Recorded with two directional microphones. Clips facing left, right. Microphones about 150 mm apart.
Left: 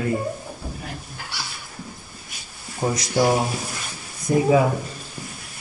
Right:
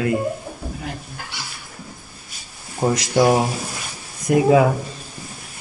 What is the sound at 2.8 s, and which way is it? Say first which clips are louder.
Speech: right 4 dB; 70° right (ahead or behind).